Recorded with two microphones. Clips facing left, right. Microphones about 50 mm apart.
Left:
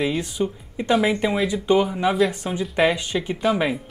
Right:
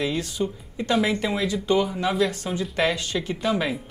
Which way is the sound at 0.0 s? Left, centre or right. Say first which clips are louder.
Left 3 dB; centre.